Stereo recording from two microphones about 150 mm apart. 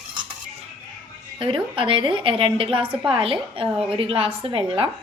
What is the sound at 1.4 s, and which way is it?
A woman's voice, 35° right (ahead or behind).